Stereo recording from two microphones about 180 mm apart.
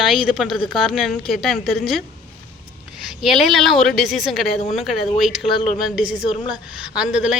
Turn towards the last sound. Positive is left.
turn(degrees=-5)  # may be behind; listen again after turning